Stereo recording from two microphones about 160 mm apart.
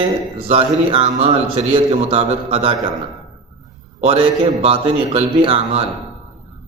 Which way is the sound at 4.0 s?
35° right (ahead or behind).